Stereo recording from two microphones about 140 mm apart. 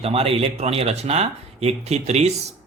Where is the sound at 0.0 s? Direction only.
45° right (ahead or behind).